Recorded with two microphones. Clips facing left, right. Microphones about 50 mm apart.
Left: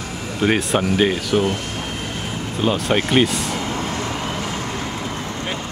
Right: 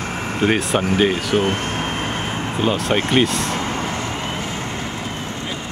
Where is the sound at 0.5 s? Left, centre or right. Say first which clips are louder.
Left 1 dB; centre.